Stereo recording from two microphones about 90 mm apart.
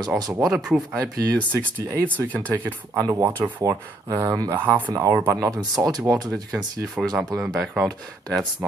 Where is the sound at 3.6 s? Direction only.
40° right (ahead or behind).